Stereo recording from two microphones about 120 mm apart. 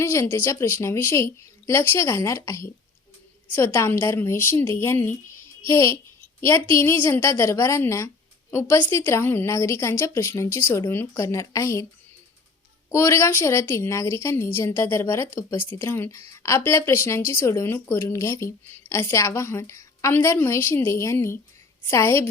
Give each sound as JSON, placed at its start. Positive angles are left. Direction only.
{"t": 0.0, "sound": "speech", "side_deg": 20}
{"t": 12.9, "sound": "speech", "side_deg": 25}